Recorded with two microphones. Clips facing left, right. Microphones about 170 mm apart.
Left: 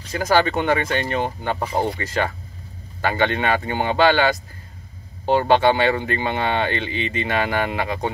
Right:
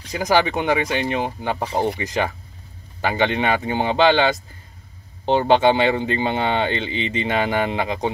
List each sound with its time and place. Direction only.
0.1 s speech: 15° right (ahead or behind)